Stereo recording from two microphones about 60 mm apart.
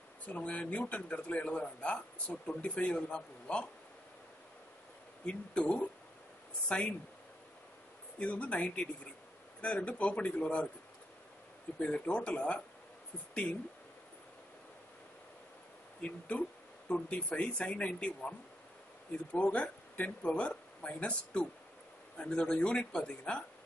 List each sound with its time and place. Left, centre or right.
0.3 s speech: left
5.2 s speech: centre
8.2 s speech: left
11.8 s speech: centre
16.0 s speech: left